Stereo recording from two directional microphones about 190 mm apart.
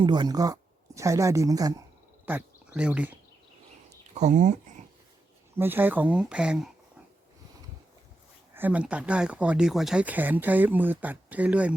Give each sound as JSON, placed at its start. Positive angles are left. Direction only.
{"t": 0.0, "sound": "speech", "side_deg": -25}
{"t": 2.2, "sound": "speech", "side_deg": -10}
{"t": 4.1, "sound": "a sound", "side_deg": -40}
{"t": 5.5, "sound": "speech", "side_deg": -10}
{"t": 8.5, "sound": "speech", "side_deg": -10}